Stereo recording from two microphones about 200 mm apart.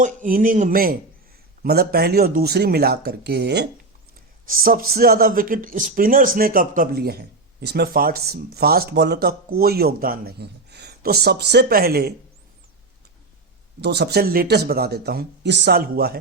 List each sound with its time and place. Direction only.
0.0 s speech: 40° right (ahead or behind)
4.4 s speech: 45° right (ahead or behind)
13.8 s speech: 55° right (ahead or behind)